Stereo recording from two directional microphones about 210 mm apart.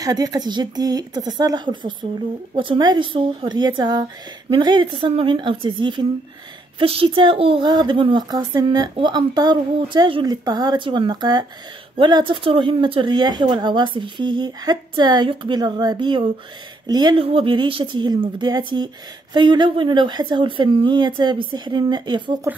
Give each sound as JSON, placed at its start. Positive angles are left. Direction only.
{"t": 0.0, "sound": "a woman's voice", "side_deg": -15}